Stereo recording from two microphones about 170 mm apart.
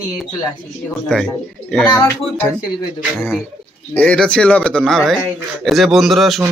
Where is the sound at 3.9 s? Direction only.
5° left (ahead or behind).